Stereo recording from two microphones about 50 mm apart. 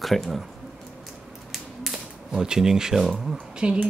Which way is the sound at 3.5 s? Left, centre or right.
Centre.